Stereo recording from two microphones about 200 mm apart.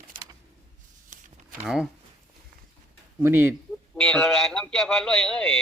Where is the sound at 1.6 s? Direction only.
5° right (ahead or behind).